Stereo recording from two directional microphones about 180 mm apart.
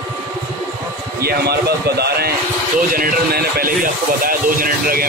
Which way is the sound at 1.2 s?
60° right (ahead or behind).